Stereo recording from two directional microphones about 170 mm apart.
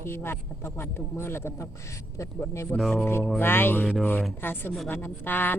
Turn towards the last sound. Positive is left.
turn(degrees=10)  # may be behind; listen again after turning